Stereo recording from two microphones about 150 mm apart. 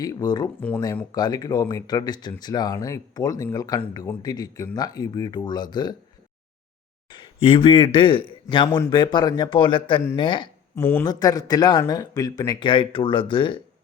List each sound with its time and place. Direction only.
0.0 s speech: 25° left (ahead or behind)
7.1 s a man's voice: 35° left (ahead or behind)
10.8 s speech: 10° left (ahead or behind)
11.0 s speech: 25° left (ahead or behind)